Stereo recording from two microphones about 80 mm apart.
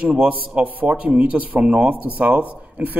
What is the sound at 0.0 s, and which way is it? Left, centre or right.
A man's voice, centre.